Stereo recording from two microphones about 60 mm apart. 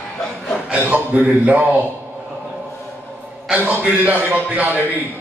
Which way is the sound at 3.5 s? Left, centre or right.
Right.